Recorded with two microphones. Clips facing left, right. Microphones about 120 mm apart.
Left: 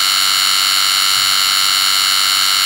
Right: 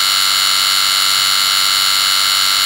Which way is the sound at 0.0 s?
Centre (ahead or behind).